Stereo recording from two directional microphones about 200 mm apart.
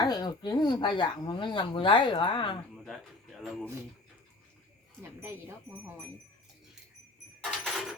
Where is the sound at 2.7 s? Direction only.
Centre (ahead or behind).